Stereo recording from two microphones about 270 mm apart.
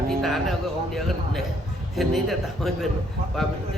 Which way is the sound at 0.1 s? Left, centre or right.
Centre.